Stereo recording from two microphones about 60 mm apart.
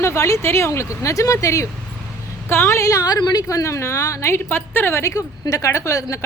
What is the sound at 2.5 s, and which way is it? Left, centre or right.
Speech, left.